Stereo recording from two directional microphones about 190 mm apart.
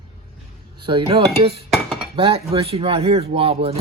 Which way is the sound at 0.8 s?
25° right (ahead or behind).